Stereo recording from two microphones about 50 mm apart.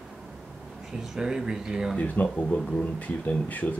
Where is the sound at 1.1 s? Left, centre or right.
Centre.